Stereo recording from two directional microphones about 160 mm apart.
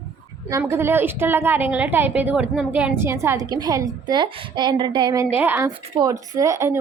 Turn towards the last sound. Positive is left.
turn(degrees=-20)  # may be behind; listen again after turning